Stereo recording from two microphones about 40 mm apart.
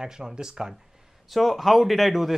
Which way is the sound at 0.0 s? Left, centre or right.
Centre.